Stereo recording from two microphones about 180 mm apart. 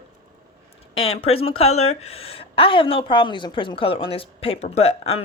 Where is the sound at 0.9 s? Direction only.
30° left (ahead or behind).